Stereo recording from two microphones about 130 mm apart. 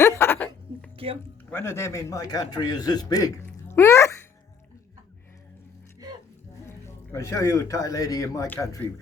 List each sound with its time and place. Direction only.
0.0 s a sound: 20° left (ahead or behind)
0.9 s speech: 45° right (ahead or behind)
1.5 s a man's voice: 20° left (ahead or behind)
6.0 s music: 30° right (ahead or behind)
6.7 s speech: 20° left (ahead or behind)